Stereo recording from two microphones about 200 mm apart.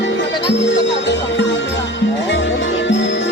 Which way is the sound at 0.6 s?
60° left (ahead or behind).